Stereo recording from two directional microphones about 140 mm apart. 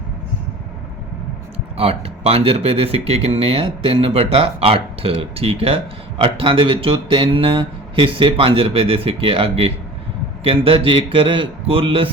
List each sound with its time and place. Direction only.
1.7 s speech: 45° right (ahead or behind)